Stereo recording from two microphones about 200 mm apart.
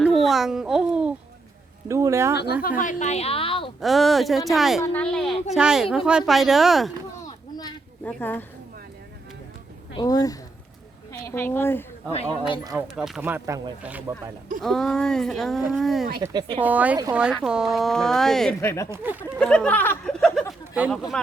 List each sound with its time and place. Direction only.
0.0 s babbling: centre (ahead or behind)
1.9 s speech: 15° right (ahead or behind)
2.3 s a woman's voice: 55° left (ahead or behind)
2.6 s a woman's voice: 40° left (ahead or behind)
3.8 s speech: centre (ahead or behind)
7.3 s a sound: 20° left (ahead or behind)
8.0 s a woman's voice: 10° left (ahead or behind)
9.9 s a woman's voice: 20° left (ahead or behind)
13.0 s speech: 5° right (ahead or behind)
14.6 s speech: centre (ahead or behind)
16.2 s speech: 20° right (ahead or behind)
16.6 s speech: 10° right (ahead or behind)
20.5 s a sound: 10° right (ahead or behind)